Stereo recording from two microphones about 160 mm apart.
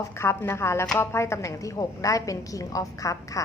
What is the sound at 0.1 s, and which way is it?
A woman's voice, 15° left (ahead or behind).